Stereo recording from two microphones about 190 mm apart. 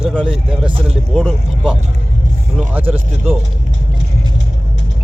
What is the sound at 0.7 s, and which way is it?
Speech, 30° right (ahead or behind).